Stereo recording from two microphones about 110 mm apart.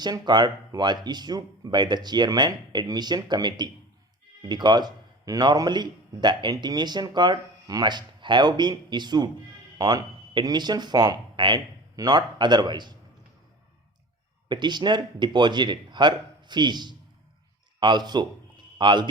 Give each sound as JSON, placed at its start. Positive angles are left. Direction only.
{"t": 0.0, "sound": "speech", "side_deg": -40}
{"t": 14.4, "sound": "speech", "side_deg": -45}